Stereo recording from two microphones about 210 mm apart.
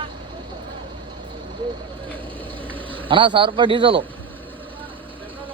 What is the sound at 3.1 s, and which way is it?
Speech, 25° right (ahead or behind).